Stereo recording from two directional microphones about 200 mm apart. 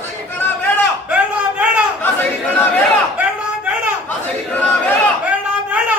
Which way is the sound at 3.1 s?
10° right (ahead or behind).